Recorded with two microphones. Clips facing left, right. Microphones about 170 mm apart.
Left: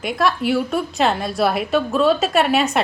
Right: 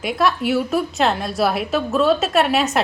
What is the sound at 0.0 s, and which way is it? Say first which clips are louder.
A woman's voice: even; centre (ahead or behind).